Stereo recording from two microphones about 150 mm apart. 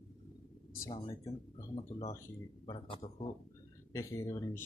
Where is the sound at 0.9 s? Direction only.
45° left (ahead or behind).